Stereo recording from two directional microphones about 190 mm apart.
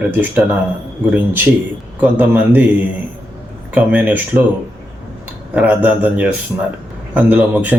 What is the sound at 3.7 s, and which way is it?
Speech, 10° right (ahead or behind).